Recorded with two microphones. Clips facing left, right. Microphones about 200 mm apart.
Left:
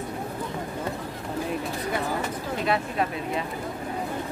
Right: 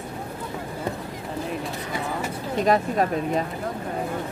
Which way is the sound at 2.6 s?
40° right (ahead or behind).